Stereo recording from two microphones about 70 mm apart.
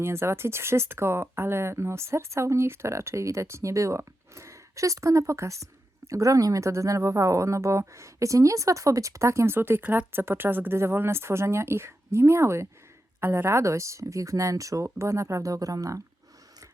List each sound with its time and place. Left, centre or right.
0.0 s speech: right